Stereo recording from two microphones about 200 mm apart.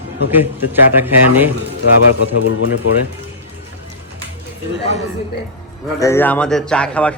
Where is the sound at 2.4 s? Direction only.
90° left.